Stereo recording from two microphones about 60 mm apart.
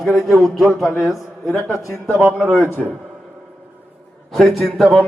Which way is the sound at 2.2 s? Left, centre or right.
Centre.